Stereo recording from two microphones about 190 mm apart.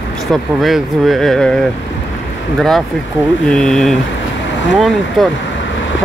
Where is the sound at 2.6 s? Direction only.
Centre (ahead or behind).